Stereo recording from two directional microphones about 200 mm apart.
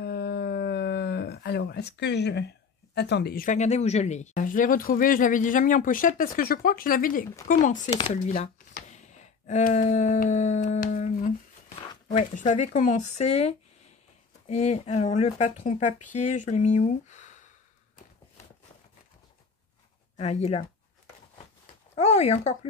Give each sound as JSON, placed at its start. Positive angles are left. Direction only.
{"t": 0.0, "sound": "a sound", "side_deg": 55}
{"t": 2.9, "sound": "speech", "side_deg": 55}
{"t": 20.2, "sound": "speech", "side_deg": 30}
{"t": 21.9, "sound": "speech", "side_deg": 30}